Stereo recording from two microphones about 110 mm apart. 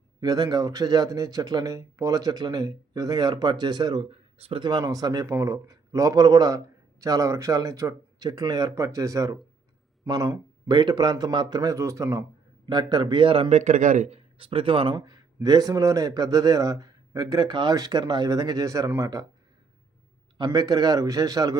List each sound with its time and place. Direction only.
0.2 s speech: 40° right (ahead or behind)
4.1 s speech: 60° right (ahead or behind)
4.6 s speech: 40° right (ahead or behind)
12.6 s a man's voice: 45° right (ahead or behind); by 14.2 s 90° right
14.3 s a man's voice: 55° right (ahead or behind); by 19.2 s 30° right (ahead or behind)
20.4 s speech: 35° right (ahead or behind)